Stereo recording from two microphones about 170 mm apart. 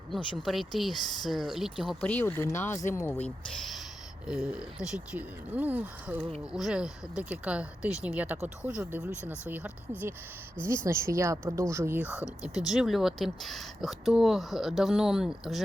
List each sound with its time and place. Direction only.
0.1 s speech: centre (ahead or behind)
4.3 s speech: 5° right (ahead or behind)
12.0 s speech: 20° left (ahead or behind)
12.7 s speech: centre (ahead or behind)